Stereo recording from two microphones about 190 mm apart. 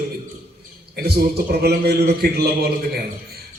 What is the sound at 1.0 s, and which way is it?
A man's voice, 55° right (ahead or behind).